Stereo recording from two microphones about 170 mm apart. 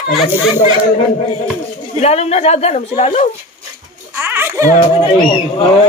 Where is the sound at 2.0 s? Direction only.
40° left (ahead or behind).